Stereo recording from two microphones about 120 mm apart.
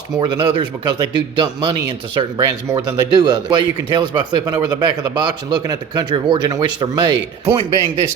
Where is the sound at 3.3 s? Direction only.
40° right (ahead or behind).